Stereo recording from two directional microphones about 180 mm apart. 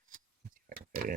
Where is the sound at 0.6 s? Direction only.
50° right (ahead or behind).